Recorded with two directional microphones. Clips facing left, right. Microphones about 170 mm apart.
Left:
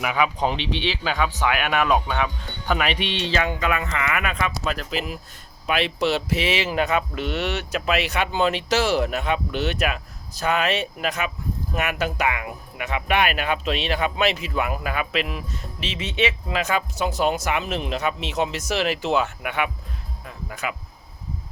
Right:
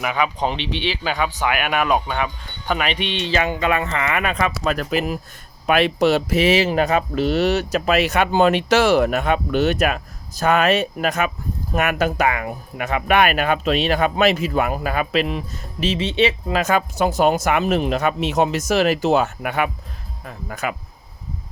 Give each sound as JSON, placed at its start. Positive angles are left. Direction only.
{"t": 0.0, "sound": "speech", "side_deg": 5}
{"t": 3.3, "sound": "speech", "side_deg": -20}
{"t": 4.8, "sound": "speech", "side_deg": -55}